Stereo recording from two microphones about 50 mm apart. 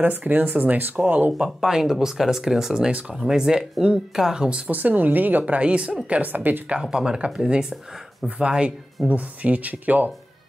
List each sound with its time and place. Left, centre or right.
0.0 s speech: right
1.6 s speech: centre
4.6 s speech: right
5.4 s speech: right
6.7 s speech: centre; by 10.1 s right